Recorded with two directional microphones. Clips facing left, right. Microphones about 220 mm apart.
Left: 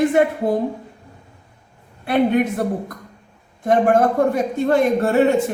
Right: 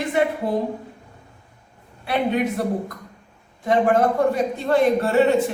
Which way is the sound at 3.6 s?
50° left (ahead or behind).